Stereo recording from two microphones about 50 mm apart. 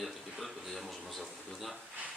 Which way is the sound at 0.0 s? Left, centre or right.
Centre.